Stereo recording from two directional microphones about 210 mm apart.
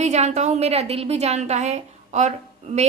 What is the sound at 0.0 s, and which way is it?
A woman's voice, 30° right (ahead or behind).